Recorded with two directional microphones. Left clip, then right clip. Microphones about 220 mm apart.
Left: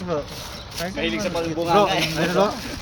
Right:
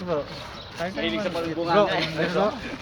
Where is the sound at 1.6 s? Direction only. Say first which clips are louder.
Left 3 dB; 40° left (ahead or behind).